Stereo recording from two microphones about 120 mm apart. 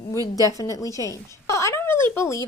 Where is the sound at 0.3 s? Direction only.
30° left (ahead or behind).